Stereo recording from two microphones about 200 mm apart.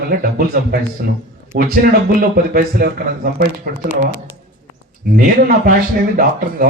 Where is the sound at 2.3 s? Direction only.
50° right (ahead or behind).